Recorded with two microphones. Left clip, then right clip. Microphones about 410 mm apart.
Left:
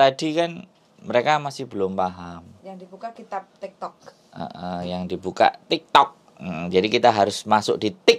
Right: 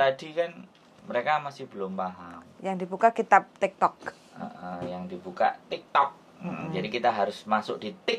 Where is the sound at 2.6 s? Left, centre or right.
Right.